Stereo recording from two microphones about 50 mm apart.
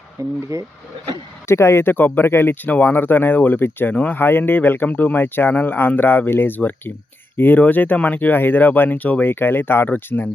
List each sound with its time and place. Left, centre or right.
0.5 s speech: right
1.5 s speech: left
2.6 s speech: left
3.9 s speech: left
4.2 s speech: left
9.2 s speech: left